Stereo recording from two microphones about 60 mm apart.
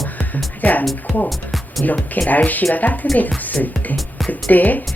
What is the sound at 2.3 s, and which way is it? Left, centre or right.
A woman's voice, left.